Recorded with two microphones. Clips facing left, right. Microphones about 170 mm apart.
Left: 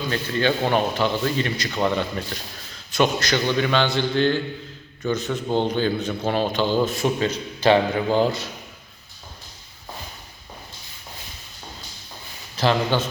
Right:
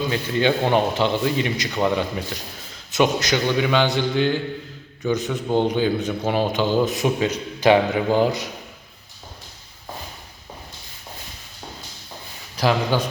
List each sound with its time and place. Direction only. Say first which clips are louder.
0.1 s a man's voice: even; 15° right (ahead or behind)
12.5 s a man's voice: even; 10° right (ahead or behind)